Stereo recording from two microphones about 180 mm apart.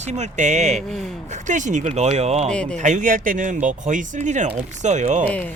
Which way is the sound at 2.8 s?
45° right (ahead or behind).